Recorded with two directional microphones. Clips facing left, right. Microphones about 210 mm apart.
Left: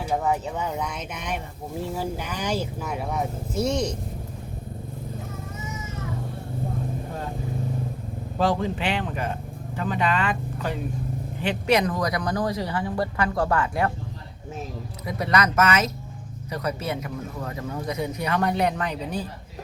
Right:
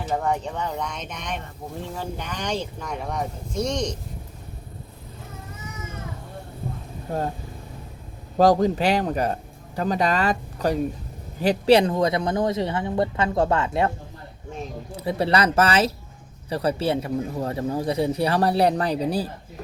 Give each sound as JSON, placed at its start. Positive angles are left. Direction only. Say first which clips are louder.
{"t": 0.0, "sound": "speech", "louder": "even", "side_deg": 10}
{"t": 8.4, "sound": "speech", "louder": "right 6 dB", "side_deg": -40}
{"t": 15.0, "sound": "speech", "louder": "right 3 dB", "side_deg": -30}